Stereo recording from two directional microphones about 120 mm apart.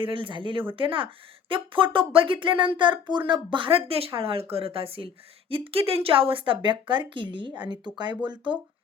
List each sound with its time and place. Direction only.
0.0 s speech: 45° right (ahead or behind)